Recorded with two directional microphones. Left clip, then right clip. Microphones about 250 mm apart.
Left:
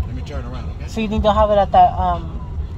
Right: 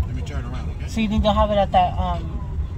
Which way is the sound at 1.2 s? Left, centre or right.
Left.